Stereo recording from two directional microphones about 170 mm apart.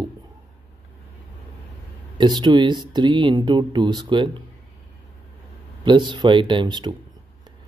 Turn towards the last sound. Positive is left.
turn(degrees=-25)  # may be behind; listen again after turning